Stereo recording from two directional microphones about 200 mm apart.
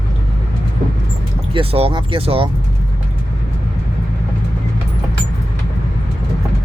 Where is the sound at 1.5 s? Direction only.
30° right (ahead or behind).